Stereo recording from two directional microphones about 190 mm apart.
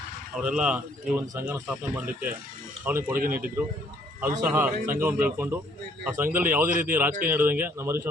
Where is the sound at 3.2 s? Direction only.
50° right (ahead or behind).